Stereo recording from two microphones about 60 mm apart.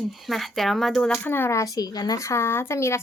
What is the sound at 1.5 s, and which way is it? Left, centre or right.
Speech, left.